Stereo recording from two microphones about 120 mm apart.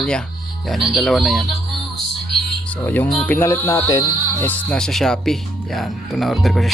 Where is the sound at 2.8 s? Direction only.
15° left (ahead or behind).